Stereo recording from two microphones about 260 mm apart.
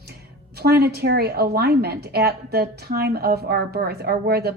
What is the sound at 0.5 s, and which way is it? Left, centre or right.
A woman's voice, right.